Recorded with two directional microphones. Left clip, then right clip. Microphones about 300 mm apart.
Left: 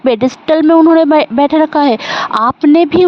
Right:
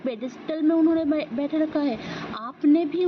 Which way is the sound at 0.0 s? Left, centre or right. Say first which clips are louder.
Left 18 dB; left.